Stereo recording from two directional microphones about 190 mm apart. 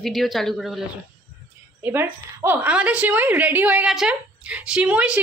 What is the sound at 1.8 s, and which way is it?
A woman's voice, 10° right (ahead or behind).